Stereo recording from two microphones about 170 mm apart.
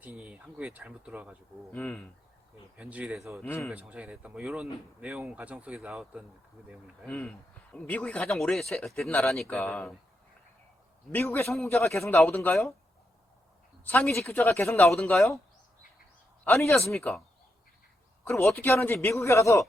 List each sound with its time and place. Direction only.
0.0 s speech: 5° right (ahead or behind)
1.7 s speech: 10° left (ahead or behind)
2.7 s speech: 5° right (ahead or behind)
7.0 s speech: 10° left (ahead or behind)
11.1 s speech: 15° left (ahead or behind)
11.5 s speech: centre (ahead or behind)
11.8 s speech: 15° left (ahead or behind)
13.8 s speech: 10° left (ahead or behind)
16.6 s speech: centre (ahead or behind)
18.3 s speech: 15° left (ahead or behind)